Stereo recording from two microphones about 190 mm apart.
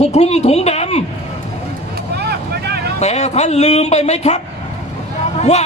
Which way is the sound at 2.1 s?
60° right (ahead or behind).